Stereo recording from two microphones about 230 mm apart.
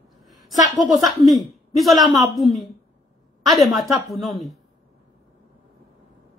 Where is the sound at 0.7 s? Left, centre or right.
Centre.